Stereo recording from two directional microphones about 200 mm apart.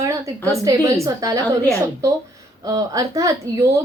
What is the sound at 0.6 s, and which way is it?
A woman's voice, 15° right (ahead or behind).